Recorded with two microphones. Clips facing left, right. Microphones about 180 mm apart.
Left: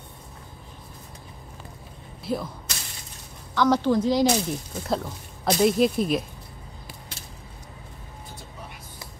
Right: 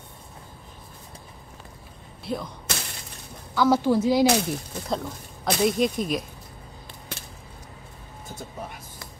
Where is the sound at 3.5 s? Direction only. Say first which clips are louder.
Even; 5° right (ahead or behind).